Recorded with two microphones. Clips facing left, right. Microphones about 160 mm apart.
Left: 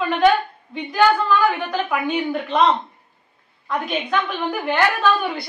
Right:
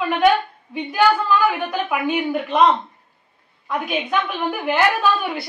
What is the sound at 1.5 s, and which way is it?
A woman's voice, 5° right (ahead or behind).